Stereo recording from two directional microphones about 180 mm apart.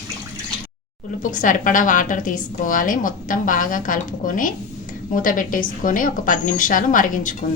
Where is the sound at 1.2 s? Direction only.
45° left (ahead or behind).